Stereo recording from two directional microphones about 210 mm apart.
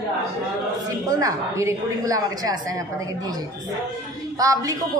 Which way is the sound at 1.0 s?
15° right (ahead or behind).